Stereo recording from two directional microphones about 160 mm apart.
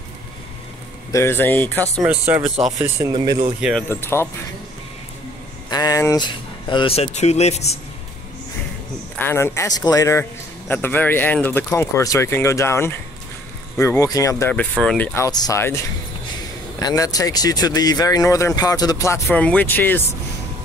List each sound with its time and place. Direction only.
1.1 s speech: 15° left (ahead or behind)
2.2 s speech: 10° right (ahead or behind)
2.8 s speech: 25° right (ahead or behind)
3.9 s speech: 15° left (ahead or behind)
5.7 s speech: 20° left (ahead or behind); by 7.8 s 40° left (ahead or behind)
9.2 s speech: 15° left (ahead or behind)
14.5 s speech: 5° left (ahead or behind)
15.1 s speech: 20° left (ahead or behind)
16.8 s speech: 20° left (ahead or behind)